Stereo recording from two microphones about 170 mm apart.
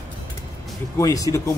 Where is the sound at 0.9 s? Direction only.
20° left (ahead or behind).